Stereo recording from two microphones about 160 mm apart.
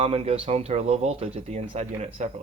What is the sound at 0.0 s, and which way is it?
Speech, 35° right (ahead or behind).